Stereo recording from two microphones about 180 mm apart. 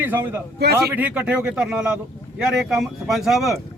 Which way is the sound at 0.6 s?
65° right (ahead or behind).